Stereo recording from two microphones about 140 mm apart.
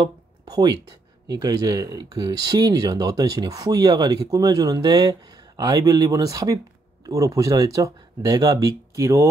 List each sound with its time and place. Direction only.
0.0 s speech: 30° right (ahead or behind)